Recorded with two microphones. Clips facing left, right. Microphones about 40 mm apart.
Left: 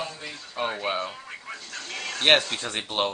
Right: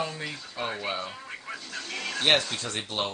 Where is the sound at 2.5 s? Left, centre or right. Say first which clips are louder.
Left 2 dB; centre.